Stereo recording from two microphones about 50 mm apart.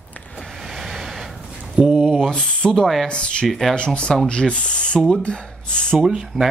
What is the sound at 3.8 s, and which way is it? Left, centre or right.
Speech, centre.